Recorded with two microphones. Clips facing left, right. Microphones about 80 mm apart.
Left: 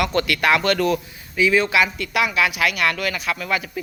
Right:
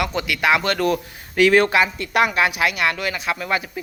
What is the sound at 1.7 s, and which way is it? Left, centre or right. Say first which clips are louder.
Speech: right 1 dB; right.